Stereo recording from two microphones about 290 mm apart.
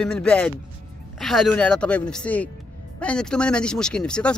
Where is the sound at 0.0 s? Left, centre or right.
Centre.